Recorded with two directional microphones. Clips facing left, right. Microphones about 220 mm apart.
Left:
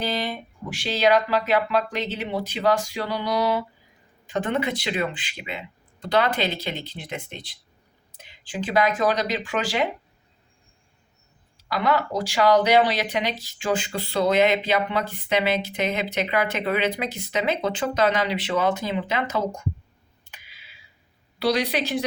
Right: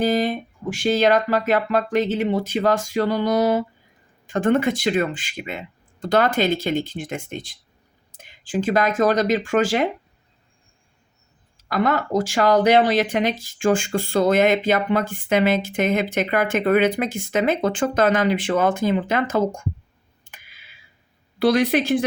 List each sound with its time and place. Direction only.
0.0 s speech: 50° right (ahead or behind)
11.5 s speech: 50° right (ahead or behind)
20.2 s clicking: 50° right (ahead or behind)
21.3 s speech: 50° right (ahead or behind)